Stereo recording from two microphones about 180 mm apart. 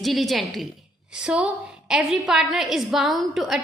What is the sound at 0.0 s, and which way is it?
A woman's voice, centre (ahead or behind).